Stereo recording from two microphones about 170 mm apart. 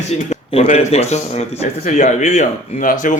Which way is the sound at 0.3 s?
35° left (ahead or behind).